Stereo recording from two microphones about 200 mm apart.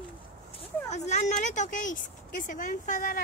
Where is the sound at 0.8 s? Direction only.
35° left (ahead or behind).